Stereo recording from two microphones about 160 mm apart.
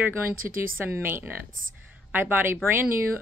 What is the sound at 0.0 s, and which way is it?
A woman's voice, 15° right (ahead or behind).